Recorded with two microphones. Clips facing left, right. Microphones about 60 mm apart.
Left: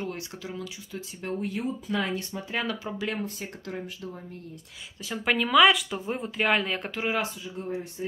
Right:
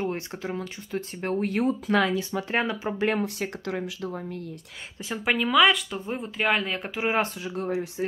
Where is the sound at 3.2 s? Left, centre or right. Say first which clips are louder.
Right 6 dB; right.